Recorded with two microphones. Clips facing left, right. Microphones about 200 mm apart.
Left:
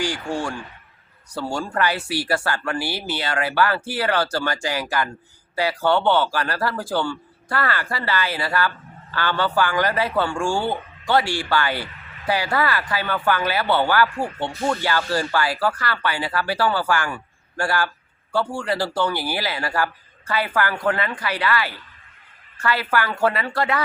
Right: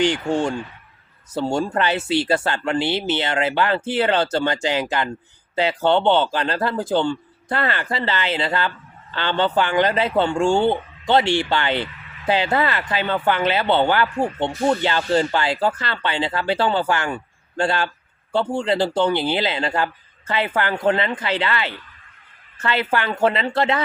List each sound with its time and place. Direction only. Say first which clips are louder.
0.0 s speech: right 6 dB; 20° right (ahead or behind)